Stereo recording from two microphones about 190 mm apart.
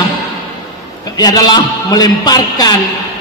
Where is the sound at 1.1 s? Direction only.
20° left (ahead or behind).